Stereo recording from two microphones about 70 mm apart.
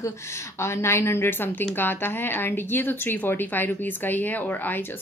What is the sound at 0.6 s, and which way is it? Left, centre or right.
A woman's voice, left.